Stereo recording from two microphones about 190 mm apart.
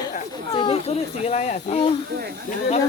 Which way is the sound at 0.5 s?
30° left (ahead or behind).